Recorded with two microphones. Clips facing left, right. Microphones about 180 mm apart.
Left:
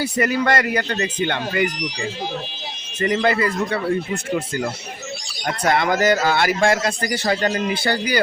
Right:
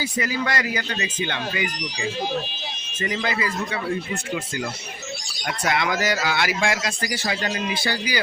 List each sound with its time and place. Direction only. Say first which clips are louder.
0.0 s a man's voice: left 6 dB; 60° left (ahead or behind)